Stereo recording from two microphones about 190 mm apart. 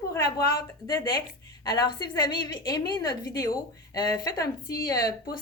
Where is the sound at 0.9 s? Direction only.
25° left (ahead or behind).